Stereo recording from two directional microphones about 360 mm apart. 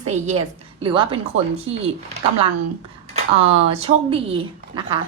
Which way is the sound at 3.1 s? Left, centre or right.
Centre.